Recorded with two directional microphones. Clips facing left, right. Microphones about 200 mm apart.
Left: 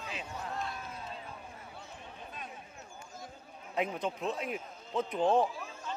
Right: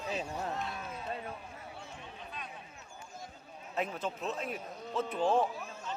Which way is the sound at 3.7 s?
15° left (ahead or behind).